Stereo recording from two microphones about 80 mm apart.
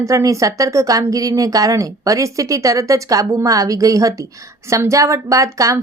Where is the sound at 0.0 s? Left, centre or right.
Right.